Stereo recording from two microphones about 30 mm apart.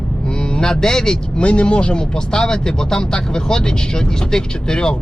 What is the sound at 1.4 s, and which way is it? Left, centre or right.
Speech, left.